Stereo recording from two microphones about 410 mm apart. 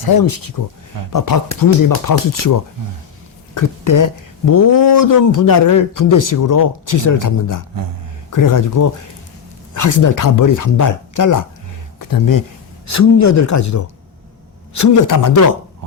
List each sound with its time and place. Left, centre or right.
0.0 s speech: left